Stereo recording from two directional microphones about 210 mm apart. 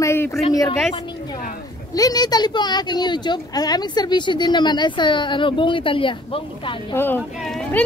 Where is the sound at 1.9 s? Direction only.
20° left (ahead or behind).